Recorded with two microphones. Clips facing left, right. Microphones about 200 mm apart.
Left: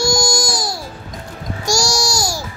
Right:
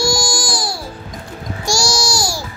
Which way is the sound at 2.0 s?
40° left (ahead or behind).